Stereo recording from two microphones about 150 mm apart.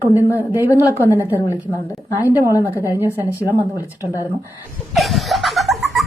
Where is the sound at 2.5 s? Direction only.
20° left (ahead or behind).